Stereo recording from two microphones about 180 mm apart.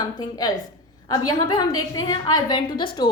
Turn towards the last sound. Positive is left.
turn(degrees=25)  # may be behind; listen again after turning